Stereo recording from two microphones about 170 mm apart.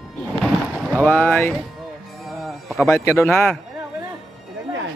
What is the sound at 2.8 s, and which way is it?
Speech, 15° left (ahead or behind).